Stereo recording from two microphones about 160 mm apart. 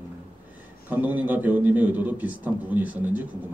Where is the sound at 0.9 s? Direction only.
10° right (ahead or behind).